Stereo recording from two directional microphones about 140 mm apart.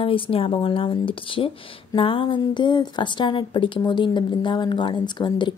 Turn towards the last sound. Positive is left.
turn(degrees=35)  # may be behind; listen again after turning